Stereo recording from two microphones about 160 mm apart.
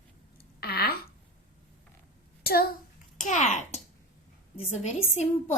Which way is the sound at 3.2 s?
50° left (ahead or behind).